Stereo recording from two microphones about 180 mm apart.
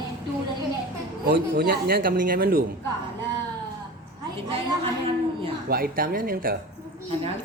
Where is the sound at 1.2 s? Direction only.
55° right (ahead or behind).